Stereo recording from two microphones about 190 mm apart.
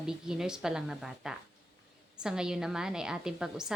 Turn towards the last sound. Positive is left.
turn(degrees=-5)  # may be behind; listen again after turning